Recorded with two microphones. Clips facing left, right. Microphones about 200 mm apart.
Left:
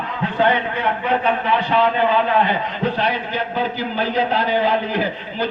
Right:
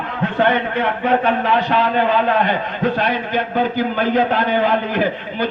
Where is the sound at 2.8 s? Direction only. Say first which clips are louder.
Right 3 dB; 50° right (ahead or behind).